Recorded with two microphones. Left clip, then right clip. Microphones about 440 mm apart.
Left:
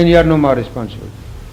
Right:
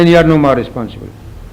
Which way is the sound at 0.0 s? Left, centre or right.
Centre.